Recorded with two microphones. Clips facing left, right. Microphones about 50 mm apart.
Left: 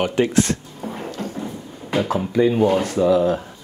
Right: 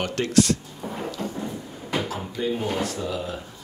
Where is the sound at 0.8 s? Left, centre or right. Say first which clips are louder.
Left 2 dB; left.